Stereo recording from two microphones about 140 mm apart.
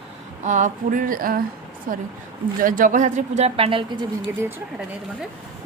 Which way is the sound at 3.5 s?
40° right (ahead or behind).